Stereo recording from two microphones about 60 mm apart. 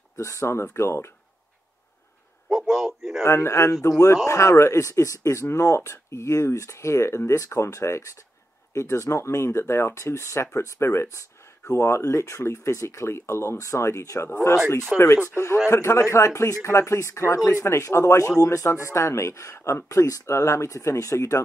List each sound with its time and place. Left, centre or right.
0.1 s speech: left
2.5 s a sound: centre
3.3 s speech: left
14.9 s speech: centre
15.3 s speech: left